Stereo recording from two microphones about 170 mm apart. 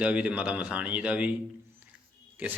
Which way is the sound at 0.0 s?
10° right (ahead or behind).